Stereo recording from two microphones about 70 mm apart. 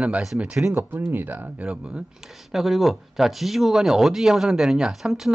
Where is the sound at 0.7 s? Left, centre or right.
Right.